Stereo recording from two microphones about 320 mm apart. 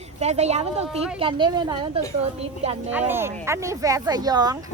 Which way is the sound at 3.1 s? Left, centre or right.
Centre.